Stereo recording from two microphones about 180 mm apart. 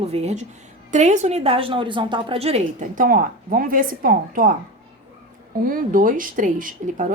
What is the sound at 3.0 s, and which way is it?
A woman's voice, 50° right (ahead or behind).